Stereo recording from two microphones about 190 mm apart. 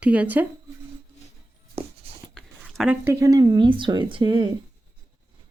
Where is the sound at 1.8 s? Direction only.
30° right (ahead or behind).